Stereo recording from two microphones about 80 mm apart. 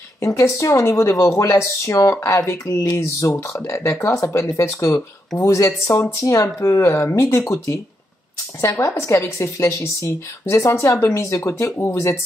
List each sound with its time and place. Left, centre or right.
0.2 s speech: left